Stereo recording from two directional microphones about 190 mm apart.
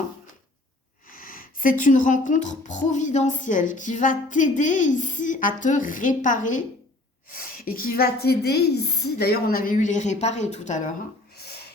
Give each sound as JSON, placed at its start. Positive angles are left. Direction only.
{"t": 1.1, "sound": "speech", "side_deg": 50}